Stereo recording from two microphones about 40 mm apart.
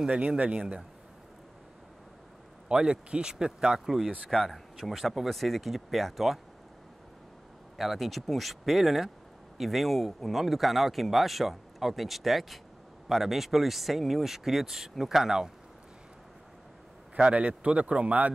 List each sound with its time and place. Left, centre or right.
0.4 s speech: right
2.7 s speech: right
4.3 s speech: centre
7.7 s speech: centre
17.2 s speech: right